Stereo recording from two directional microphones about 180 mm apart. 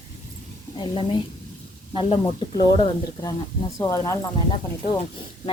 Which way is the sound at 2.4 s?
25° left (ahead or behind).